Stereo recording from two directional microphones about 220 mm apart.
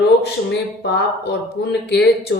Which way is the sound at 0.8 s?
50° left (ahead or behind).